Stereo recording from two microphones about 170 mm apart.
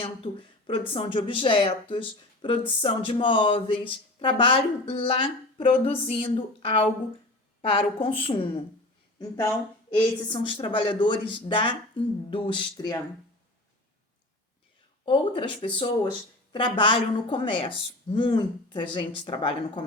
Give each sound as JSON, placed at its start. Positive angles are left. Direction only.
{"t": 0.0, "sound": "speech", "side_deg": 30}
{"t": 9.9, "sound": "a woman's voice", "side_deg": 30}
{"t": 15.0, "sound": "a woman's voice", "side_deg": 30}